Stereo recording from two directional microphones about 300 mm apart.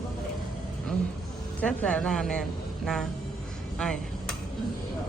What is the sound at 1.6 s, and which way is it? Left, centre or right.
Speech, centre.